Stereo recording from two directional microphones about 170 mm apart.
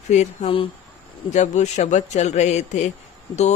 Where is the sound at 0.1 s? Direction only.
35° left (ahead or behind).